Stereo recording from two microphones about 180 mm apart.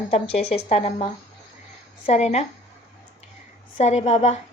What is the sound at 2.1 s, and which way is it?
Speech, 40° left (ahead or behind).